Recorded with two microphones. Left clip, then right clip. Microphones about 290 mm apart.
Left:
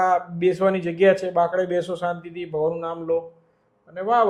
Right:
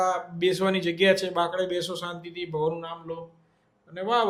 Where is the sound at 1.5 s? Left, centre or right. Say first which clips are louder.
Left 5 dB; centre.